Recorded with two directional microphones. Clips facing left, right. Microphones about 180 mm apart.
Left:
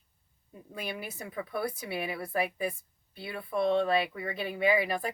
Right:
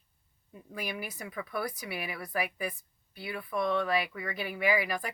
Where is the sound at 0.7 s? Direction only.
25° left (ahead or behind).